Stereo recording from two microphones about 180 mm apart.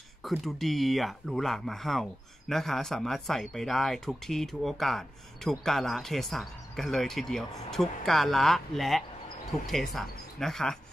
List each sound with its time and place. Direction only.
0.2 s speech: centre (ahead or behind)